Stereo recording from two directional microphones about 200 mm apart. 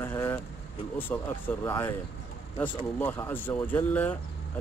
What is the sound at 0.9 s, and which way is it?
A man's voice, 10° left (ahead or behind).